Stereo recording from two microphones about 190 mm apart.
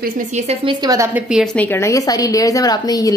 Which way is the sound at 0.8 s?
15° right (ahead or behind).